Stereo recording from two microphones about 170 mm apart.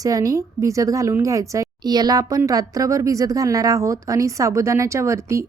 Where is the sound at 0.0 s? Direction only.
20° right (ahead or behind).